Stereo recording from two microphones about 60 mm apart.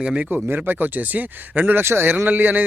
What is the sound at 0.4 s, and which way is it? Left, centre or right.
Speech, right.